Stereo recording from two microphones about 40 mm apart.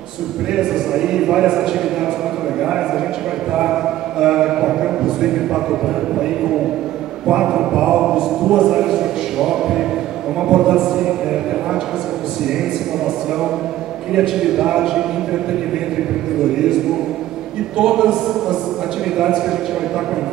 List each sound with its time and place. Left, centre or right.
0.5 s a man's voice: centre
14.1 s a man's voice: centre
17.7 s a man's voice: centre